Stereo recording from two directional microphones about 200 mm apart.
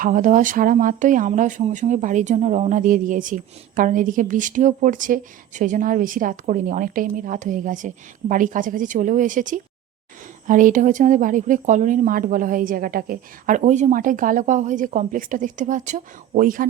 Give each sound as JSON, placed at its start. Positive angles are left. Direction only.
{"t": 0.0, "sound": "speech", "side_deg": -40}